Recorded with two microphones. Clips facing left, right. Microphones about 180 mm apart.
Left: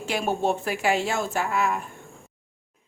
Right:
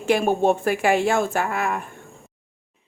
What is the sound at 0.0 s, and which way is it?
Speech, 55° right (ahead or behind).